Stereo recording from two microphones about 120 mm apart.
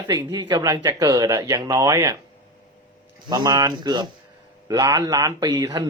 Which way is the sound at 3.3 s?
30° right (ahead or behind).